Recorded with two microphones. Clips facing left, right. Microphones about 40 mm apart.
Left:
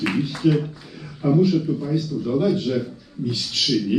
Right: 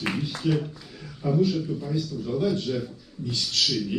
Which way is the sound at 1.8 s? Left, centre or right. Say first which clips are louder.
Left 6 dB; left.